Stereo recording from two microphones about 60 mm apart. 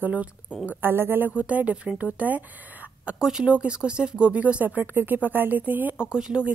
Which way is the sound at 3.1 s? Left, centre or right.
Centre.